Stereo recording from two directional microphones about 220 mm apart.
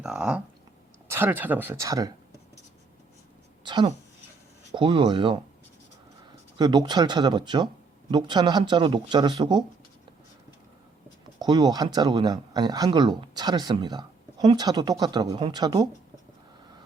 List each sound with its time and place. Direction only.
0.0 s speech: 5° right (ahead or behind)
3.6 s speech: 20° right (ahead or behind)
6.6 s speech: 20° right (ahead or behind)
11.3 s speech: 20° right (ahead or behind)